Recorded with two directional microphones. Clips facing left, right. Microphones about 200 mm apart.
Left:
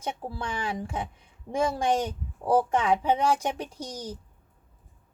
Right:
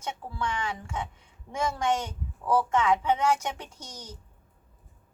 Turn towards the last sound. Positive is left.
turn(degrees=35)  # may be behind; listen again after turning